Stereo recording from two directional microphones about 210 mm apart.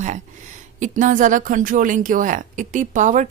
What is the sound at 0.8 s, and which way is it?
A woman's voice, 40° right (ahead or behind).